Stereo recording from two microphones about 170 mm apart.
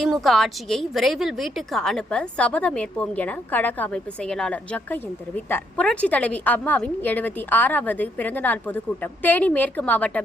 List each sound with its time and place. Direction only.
0.0 s a woman's voice: centre (ahead or behind)